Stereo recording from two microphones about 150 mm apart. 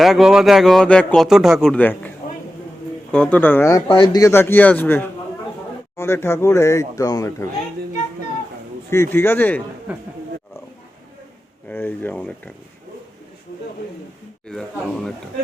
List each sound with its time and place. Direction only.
0.0 s a man's voice: centre (ahead or behind); by 3.8 s 20° left (ahead or behind)
3.8 s a man's voice: 35° left (ahead or behind)
4.2 s a man's voice: 15° left (ahead or behind)
8.9 s a man's voice: 15° left (ahead or behind)
9.9 s speech: 10° right (ahead or behind)
11.7 s a man's voice: 15° left (ahead or behind)
14.4 s speech: 5° left (ahead or behind)